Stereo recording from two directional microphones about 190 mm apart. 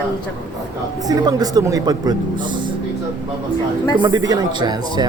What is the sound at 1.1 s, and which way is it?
Speech, 20° right (ahead or behind).